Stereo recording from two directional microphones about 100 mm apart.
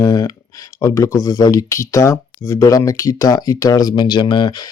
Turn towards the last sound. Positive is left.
turn(degrees=50)  # may be behind; listen again after turning